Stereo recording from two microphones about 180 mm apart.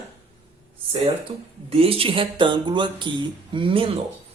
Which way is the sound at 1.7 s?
30° right (ahead or behind).